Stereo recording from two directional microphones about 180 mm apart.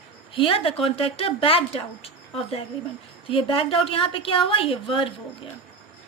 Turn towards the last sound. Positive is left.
turn(degrees=30)  # may be behind; listen again after turning